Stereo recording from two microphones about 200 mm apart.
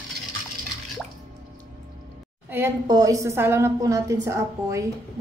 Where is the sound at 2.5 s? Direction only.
10° right (ahead or behind).